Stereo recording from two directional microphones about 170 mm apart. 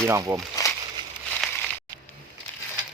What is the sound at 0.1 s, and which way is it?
Speech, 20° right (ahead or behind).